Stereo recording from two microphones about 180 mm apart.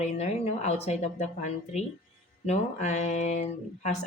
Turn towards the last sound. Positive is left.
turn(degrees=40)  # may be behind; listen again after turning